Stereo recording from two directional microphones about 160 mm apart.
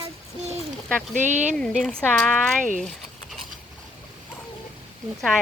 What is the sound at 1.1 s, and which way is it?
Speech, 50° right (ahead or behind).